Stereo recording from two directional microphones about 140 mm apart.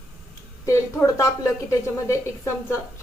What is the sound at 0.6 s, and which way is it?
A woman's voice, 20° left (ahead or behind).